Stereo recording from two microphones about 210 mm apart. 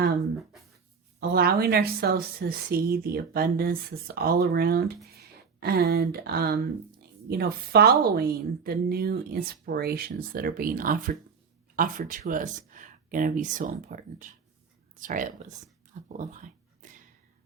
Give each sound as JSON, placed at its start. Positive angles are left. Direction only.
{"t": 1.2, "sound": "a woman's voice", "side_deg": -50}